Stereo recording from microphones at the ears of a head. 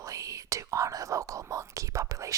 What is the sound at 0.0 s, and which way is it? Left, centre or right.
Whispering, right.